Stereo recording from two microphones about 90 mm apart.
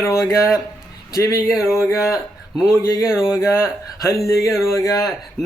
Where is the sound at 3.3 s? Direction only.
35° left (ahead or behind).